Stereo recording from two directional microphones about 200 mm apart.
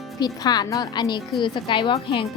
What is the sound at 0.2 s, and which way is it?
A woman's voice, 20° left (ahead or behind).